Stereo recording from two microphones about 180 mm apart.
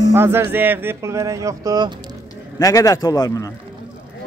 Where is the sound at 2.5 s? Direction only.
20° left (ahead or behind).